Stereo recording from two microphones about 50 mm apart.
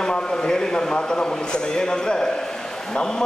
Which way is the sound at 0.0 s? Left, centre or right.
Centre.